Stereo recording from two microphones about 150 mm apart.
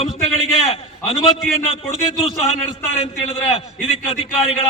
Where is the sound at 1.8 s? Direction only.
45° left (ahead or behind).